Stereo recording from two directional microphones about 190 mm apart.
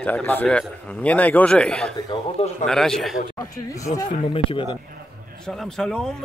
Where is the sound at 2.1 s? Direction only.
35° left (ahead or behind).